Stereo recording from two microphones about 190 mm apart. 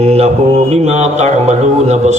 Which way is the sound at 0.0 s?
35° right (ahead or behind).